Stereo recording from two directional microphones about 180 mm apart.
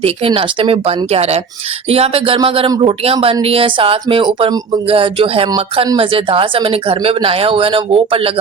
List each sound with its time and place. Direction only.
0.0 s speech: 30° right (ahead or behind)